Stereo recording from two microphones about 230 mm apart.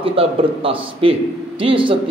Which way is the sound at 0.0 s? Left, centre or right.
Right.